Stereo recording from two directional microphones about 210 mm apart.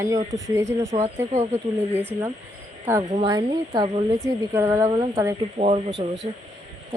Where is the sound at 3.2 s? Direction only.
25° right (ahead or behind).